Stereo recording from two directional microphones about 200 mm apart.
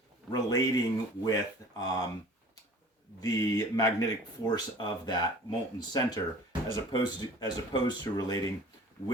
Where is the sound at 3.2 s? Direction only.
20° left (ahead or behind).